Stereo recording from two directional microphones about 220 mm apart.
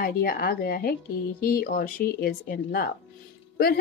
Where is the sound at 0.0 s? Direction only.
40° left (ahead or behind).